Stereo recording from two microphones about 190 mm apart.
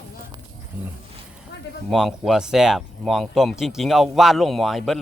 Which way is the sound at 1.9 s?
Centre (ahead or behind).